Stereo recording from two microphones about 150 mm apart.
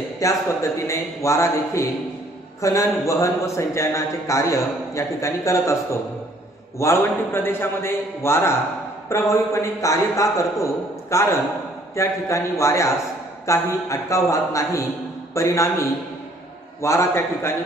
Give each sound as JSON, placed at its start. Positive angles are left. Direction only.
{"t": 0.2, "sound": "a man's voice", "side_deg": 20}